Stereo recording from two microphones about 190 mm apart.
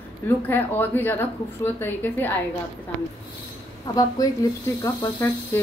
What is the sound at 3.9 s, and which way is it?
A woman's voice, 20° left (ahead or behind).